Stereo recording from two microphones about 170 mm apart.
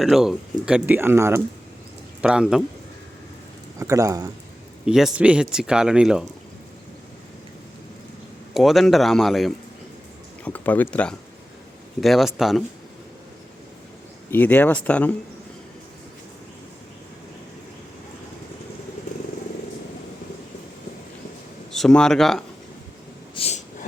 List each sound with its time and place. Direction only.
0.0 s speech: centre (ahead or behind)
2.2 s speech: 5° right (ahead or behind)
3.8 s speech: 20° right (ahead or behind)
4.9 s speech: 5° right (ahead or behind)
8.5 s speech: centre (ahead or behind)
14.3 s speech: 10° left (ahead or behind)
21.7 s speech: 5° left (ahead or behind)
23.3 s snort: 35° left (ahead or behind)